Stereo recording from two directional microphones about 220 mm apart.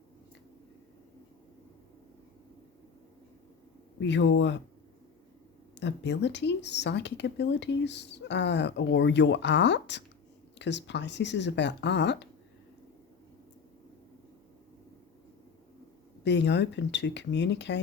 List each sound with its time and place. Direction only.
4.0 s speech: 55° left (ahead or behind)
5.8 s speech: 50° left (ahead or behind)
16.2 s speech: 50° left (ahead or behind)